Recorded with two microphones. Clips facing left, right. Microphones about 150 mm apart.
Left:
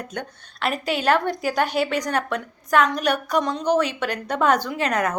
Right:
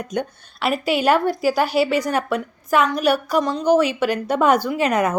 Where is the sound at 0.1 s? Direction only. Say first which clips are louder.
Right 7 dB; 10° right (ahead or behind).